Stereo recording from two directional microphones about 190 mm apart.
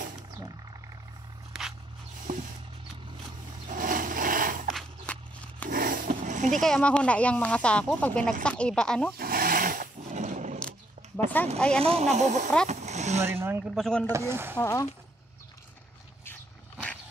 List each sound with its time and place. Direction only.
2.3 s mechanisms: 45° right (ahead or behind)
3.6 s a sound: 45° right (ahead or behind)
4.6 s walk: 5° left (ahead or behind)
5.7 s a sound: 50° right (ahead or behind)
6.6 s speech: 5° left (ahead or behind)
9.1 s a sound: 50° right (ahead or behind)
11.5 s speech: 5° left (ahead or behind)
11.8 s speech: 35° right (ahead or behind)
12.6 s vehicle: 35° right (ahead or behind)
13.2 s speech: 10° right (ahead or behind)
14.0 s speech: 15° right (ahead or behind)
14.6 s speech: 15° left (ahead or behind)
16.3 s dog: 5° left (ahead or behind)